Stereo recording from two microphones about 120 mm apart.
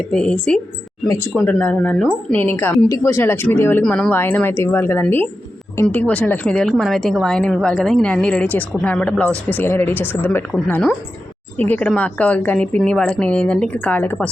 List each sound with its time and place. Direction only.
0.1 s a woman's voice: 5° left (ahead or behind)
11.5 s a woman's voice: 15° left (ahead or behind)